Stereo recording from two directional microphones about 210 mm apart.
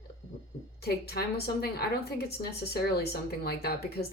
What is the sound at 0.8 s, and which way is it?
A woman's voice, 50° left (ahead or behind).